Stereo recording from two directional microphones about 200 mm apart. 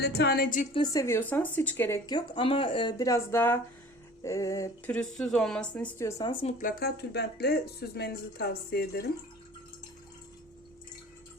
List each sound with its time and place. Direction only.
0.0 s speech: 55° left (ahead or behind)
0.7 s speech: 20° left (ahead or behind)
4.9 s speech: 5° left (ahead or behind)
6.4 s speech: 40° left (ahead or behind)